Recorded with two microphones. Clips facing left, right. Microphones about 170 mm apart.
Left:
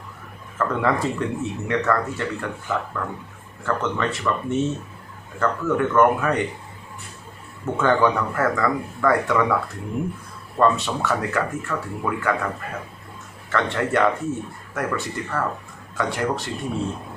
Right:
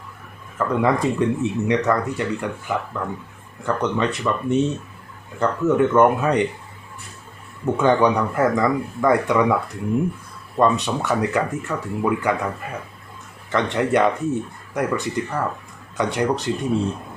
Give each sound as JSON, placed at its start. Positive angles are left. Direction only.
{"t": 0.6, "sound": "speech", "side_deg": -15}
{"t": 7.6, "sound": "speech", "side_deg": -15}
{"t": 10.6, "sound": "speech", "side_deg": -15}
{"t": 13.5, "sound": "speech", "side_deg": -15}
{"t": 16.6, "sound": "speech", "side_deg": 0}